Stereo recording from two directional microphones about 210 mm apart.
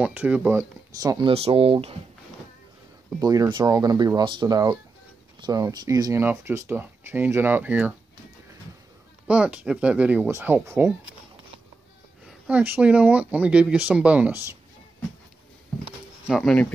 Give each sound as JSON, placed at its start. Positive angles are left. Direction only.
{"t": 0.0, "sound": "speech", "side_deg": -5}
{"t": 3.2, "sound": "speech", "side_deg": -15}
{"t": 9.3, "sound": "speech", "side_deg": -5}
{"t": 12.3, "sound": "speech", "side_deg": -5}
{"t": 16.3, "sound": "speech", "side_deg": 0}